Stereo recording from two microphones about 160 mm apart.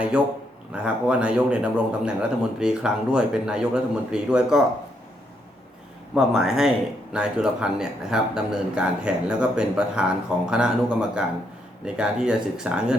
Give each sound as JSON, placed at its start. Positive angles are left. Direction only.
{"t": 0.7, "sound": "speech", "side_deg": -5}
{"t": 6.1, "sound": "speech", "side_deg": 0}